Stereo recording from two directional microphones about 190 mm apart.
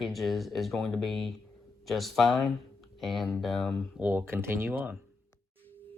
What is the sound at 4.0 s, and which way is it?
Speech, 10° right (ahead or behind).